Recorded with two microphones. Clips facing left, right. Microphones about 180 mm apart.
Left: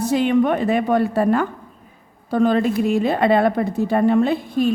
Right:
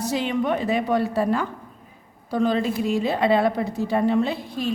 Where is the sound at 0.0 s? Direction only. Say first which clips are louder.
Left 7 dB; 55° left (ahead or behind).